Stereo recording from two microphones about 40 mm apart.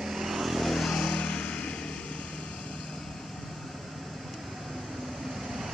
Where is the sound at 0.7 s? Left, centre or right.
Centre.